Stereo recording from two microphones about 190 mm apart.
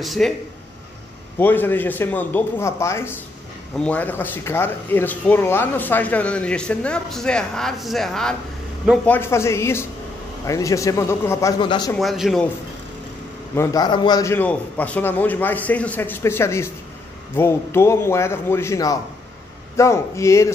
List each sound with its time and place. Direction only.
0.0 s a man's voice: centre (ahead or behind)
1.4 s a man's voice: 10° left (ahead or behind)
11.9 s a man's voice: centre (ahead or behind)
13.6 s speech: 20° left (ahead or behind)